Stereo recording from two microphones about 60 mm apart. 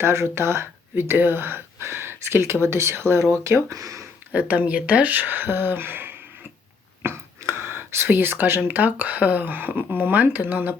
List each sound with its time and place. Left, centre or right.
0.0 s speech: right
3.4 s speech: right
4.3 s speech: right